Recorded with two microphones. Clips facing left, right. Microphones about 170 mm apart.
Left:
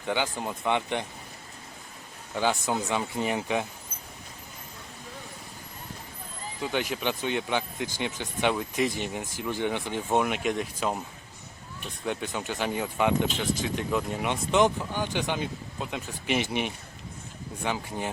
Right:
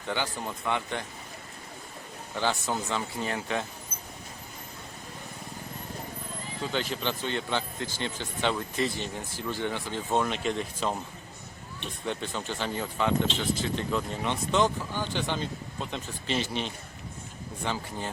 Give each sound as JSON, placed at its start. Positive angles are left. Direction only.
{"t": 0.1, "sound": "speech", "side_deg": 15}
{"t": 2.3, "sound": "speech", "side_deg": 15}
{"t": 6.6, "sound": "speech", "side_deg": 15}
{"t": 12.0, "sound": "speech", "side_deg": 10}